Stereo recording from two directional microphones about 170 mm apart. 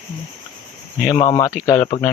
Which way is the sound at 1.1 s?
25° left (ahead or behind).